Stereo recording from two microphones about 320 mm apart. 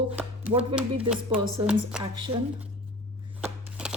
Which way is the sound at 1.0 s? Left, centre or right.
Centre.